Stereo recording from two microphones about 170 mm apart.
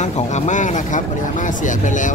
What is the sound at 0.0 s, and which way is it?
Speech, 45° left (ahead or behind).